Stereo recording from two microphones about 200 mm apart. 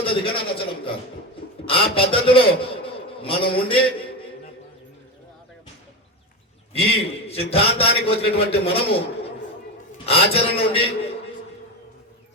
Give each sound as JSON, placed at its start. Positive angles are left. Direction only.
{"t": 0.0, "sound": "a man's voice", "side_deg": 25}
{"t": 6.7, "sound": "a man's voice", "side_deg": 30}